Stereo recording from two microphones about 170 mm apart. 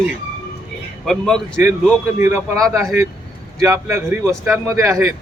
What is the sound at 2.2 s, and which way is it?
Speech, 15° right (ahead or behind).